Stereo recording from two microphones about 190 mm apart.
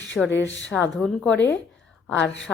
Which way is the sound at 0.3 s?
70° left (ahead or behind).